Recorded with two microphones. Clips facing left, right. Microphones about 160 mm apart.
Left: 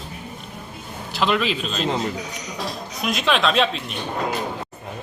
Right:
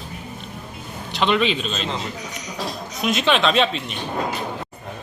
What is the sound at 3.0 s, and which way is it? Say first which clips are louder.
Speech: right 2 dB; centre (ahead or behind).